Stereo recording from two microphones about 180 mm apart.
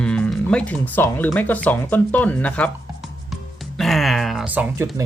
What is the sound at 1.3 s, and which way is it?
Music, 10° left (ahead or behind).